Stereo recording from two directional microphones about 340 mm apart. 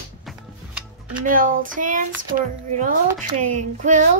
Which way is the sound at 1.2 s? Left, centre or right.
Right.